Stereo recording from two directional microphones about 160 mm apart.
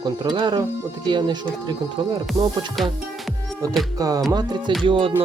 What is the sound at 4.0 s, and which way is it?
Speech, 20° right (ahead or behind).